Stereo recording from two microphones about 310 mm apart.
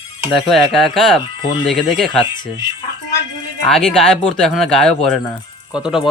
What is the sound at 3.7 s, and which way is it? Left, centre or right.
Speech, centre.